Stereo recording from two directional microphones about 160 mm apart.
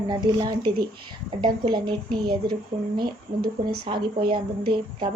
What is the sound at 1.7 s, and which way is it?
Speech, 25° right (ahead or behind).